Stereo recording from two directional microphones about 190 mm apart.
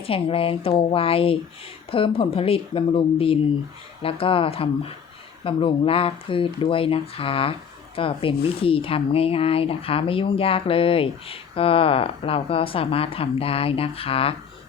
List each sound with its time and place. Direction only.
0.0 s speech: 30° left (ahead or behind)